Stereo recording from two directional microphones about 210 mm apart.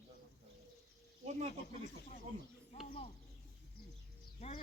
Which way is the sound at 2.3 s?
35° right (ahead or behind).